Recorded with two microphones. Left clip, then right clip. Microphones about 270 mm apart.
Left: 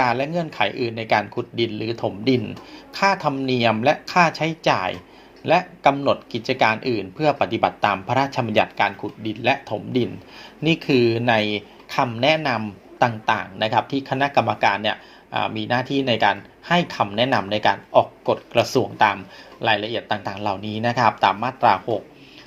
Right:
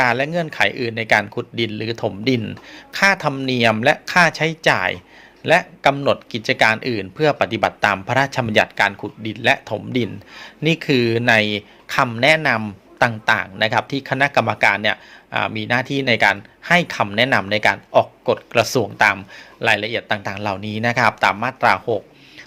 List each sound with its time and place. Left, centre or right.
0.0 s speech: right